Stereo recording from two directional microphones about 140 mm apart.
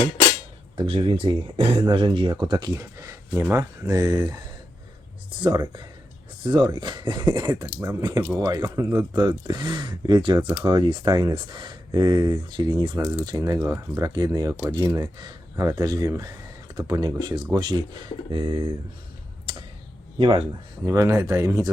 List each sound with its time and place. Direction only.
0.8 s speech: 40° right (ahead or behind)
11.1 s speech: 25° right (ahead or behind)
19.5 s a sound: 40° right (ahead or behind)
20.1 s speech: 35° right (ahead or behind)
20.8 s speech: 20° right (ahead or behind)